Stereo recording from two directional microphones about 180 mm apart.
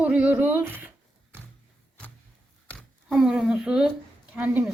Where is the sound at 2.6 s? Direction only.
Centre (ahead or behind).